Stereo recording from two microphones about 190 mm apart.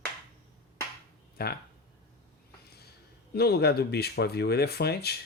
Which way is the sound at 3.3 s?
55° left (ahead or behind).